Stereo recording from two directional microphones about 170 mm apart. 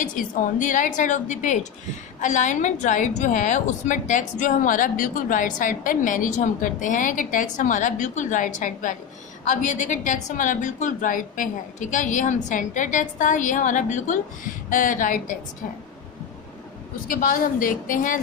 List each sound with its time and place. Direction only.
0.0 s a woman's voice: 50° left (ahead or behind)
17.1 s a woman's voice: 55° left (ahead or behind)